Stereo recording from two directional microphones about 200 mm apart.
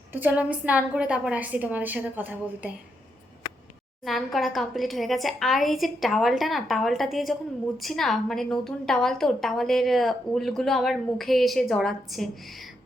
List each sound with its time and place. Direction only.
0.1 s a woman's voice: 10° right (ahead or behind)
4.0 s a woman's voice: centre (ahead or behind)